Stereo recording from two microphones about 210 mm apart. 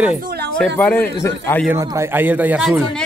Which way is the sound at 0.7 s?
10° left (ahead or behind).